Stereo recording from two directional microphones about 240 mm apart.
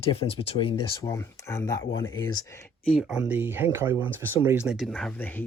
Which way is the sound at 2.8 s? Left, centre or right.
Centre.